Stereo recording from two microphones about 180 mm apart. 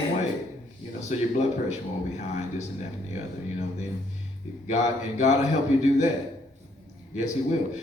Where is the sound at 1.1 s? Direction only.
40° left (ahead or behind).